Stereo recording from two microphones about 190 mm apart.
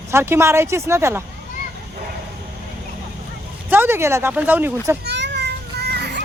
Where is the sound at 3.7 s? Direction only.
10° right (ahead or behind).